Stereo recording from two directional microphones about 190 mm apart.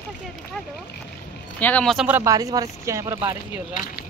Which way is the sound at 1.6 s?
5° left (ahead or behind).